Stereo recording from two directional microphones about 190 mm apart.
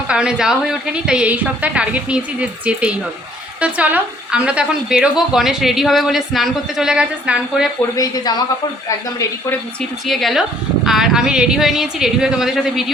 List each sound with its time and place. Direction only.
0.1 s a woman's voice: 5° right (ahead or behind)
7.9 s speech: 20° left (ahead or behind)
10.1 s a woman's voice: centre (ahead or behind)